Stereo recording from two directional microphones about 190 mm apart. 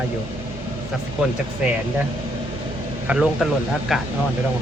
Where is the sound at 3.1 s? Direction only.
5° right (ahead or behind).